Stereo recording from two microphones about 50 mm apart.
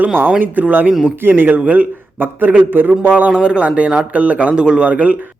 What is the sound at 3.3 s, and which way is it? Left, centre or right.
A man's voice, centre.